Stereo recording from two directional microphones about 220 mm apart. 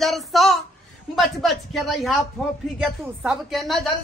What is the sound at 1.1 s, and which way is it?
Speech, centre (ahead or behind).